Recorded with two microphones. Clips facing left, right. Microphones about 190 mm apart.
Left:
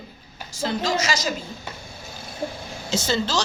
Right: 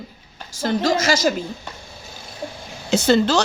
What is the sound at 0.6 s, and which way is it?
Speech, 50° right (ahead or behind).